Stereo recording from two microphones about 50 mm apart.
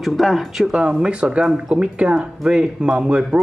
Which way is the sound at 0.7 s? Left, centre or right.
Centre.